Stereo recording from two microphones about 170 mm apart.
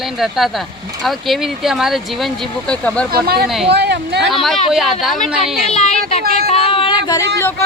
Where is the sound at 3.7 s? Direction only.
80° right.